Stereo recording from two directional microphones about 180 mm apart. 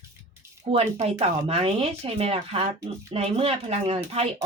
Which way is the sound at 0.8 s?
35° right (ahead or behind).